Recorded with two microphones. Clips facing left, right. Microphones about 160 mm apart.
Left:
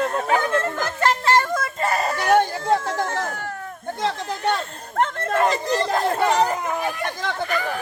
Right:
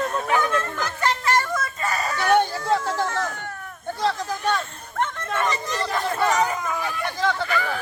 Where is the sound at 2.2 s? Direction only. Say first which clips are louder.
Even; 45° left (ahead or behind).